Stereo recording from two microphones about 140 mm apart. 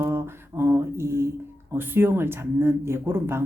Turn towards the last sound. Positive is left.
turn(degrees=-15)  # may be behind; listen again after turning